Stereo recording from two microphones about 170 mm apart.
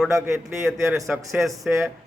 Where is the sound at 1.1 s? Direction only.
Centre (ahead or behind).